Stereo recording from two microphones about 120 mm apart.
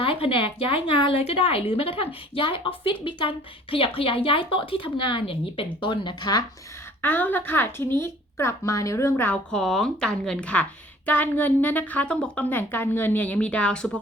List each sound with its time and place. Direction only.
0.0 s a woman's voice: 50° left (ahead or behind)
7.0 s a woman's voice: 15° left (ahead or behind)
9.5 s a woman's voice: 5° left (ahead or behind)